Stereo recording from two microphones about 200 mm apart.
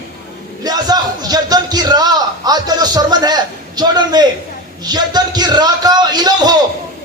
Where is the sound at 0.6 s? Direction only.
20° right (ahead or behind).